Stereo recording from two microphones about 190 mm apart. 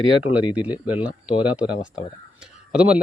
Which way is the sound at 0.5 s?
5° right (ahead or behind).